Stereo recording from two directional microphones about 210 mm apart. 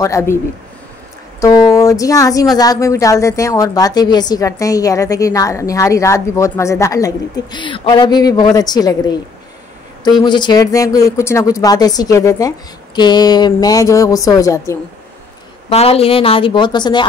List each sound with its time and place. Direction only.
0.0 s a woman's voice: 15° left (ahead or behind)
1.4 s a woman's voice: 15° left (ahead or behind)
10.2 s a woman's voice: 20° left (ahead or behind)
15.7 s speech: 30° left (ahead or behind)